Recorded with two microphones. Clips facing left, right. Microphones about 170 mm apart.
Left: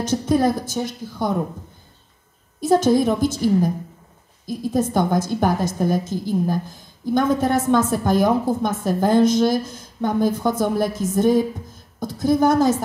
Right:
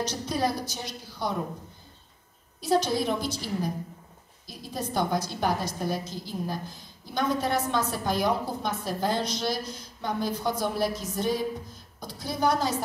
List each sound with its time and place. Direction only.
0.0 s a woman's voice: 50° left (ahead or behind)
2.6 s a woman's voice: 45° left (ahead or behind)